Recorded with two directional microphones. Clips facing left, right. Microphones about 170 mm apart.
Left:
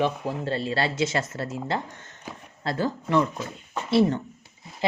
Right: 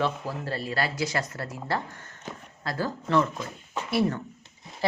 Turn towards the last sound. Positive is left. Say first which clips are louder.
# left 1 dB
turn(degrees=20)  # may be behind; listen again after turning